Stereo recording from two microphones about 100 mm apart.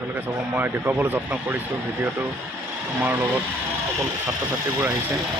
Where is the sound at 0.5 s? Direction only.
20° right (ahead or behind).